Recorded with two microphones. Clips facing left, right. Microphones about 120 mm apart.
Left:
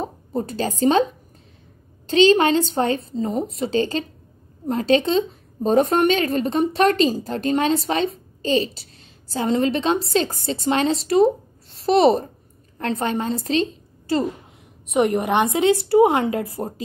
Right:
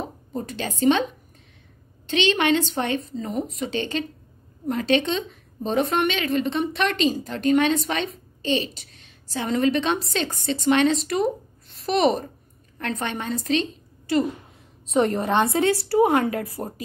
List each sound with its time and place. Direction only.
0.0 s speech: 35° left (ahead or behind)
2.0 s a woman's voice: 35° left (ahead or behind)
14.9 s a woman's voice: 15° left (ahead or behind)